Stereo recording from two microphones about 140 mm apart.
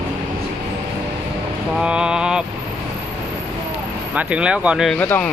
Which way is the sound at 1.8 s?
5° right (ahead or behind).